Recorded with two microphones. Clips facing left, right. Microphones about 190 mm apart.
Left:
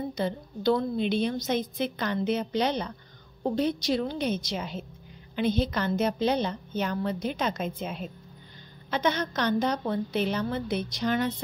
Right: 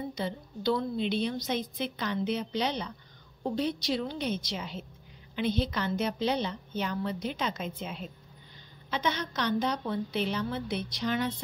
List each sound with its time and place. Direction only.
0.1 s a woman's voice: 50° left (ahead or behind)